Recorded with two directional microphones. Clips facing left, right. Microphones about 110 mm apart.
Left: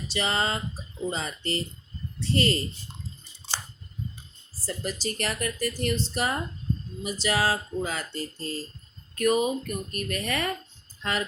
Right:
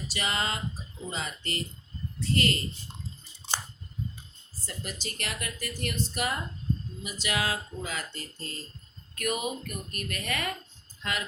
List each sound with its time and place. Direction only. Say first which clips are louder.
0.1 s speech: left 5 dB; 30° left (ahead or behind)
4.6 s speech: left 7 dB; 35° left (ahead or behind)